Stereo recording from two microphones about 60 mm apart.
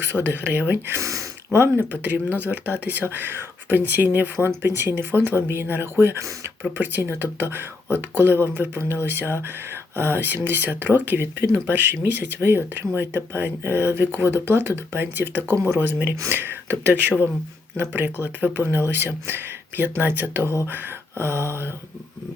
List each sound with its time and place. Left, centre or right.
0.0 s speech: right
0.9 s speech: right
1.9 s speech: right
20.7 s a sound: right